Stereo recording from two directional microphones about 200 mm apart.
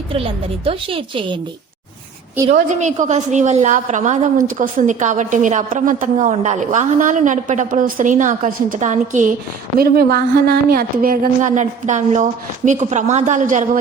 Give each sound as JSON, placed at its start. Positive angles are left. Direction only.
{"t": 0.1, "sound": "a woman's voice", "side_deg": -30}
{"t": 2.5, "sound": "a woman's voice", "side_deg": -35}
{"t": 9.7, "sound": "a woman's voice", "side_deg": -50}